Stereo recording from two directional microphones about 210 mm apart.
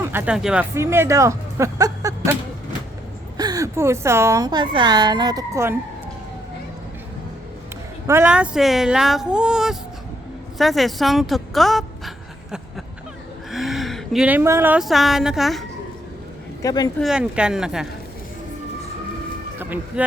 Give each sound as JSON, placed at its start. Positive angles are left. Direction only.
{"t": 0.0, "sound": "speech", "side_deg": -10}
{"t": 3.3, "sound": "a woman's voice", "side_deg": -15}
{"t": 8.0, "sound": "speech", "side_deg": -10}
{"t": 16.6, "sound": "speech", "side_deg": 20}
{"t": 17.0, "sound": "speech", "side_deg": -5}
{"t": 19.5, "sound": "speech", "side_deg": -10}